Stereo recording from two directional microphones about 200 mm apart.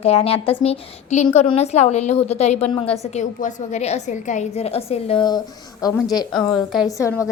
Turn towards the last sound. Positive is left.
turn(degrees=15)  # may be behind; listen again after turning